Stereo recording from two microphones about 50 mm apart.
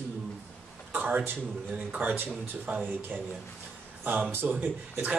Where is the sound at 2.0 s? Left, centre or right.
Right.